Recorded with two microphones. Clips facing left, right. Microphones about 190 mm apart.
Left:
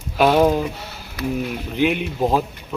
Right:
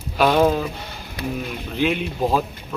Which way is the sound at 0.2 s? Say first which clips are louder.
Left 2 dB; 10° left (ahead or behind).